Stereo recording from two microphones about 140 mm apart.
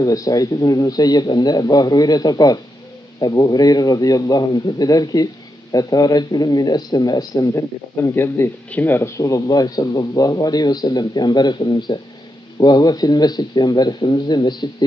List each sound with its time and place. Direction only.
0.0 s a man's voice: 25° left (ahead or behind)